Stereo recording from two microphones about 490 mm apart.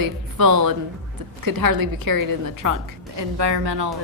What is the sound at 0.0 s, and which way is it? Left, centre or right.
A woman's voice, right.